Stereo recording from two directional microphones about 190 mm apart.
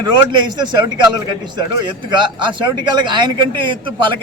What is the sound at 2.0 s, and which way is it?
A man's voice, 25° right (ahead or behind).